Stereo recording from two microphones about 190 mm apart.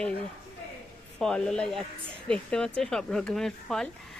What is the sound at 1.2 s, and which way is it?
A woman's voice, 5° left (ahead or behind).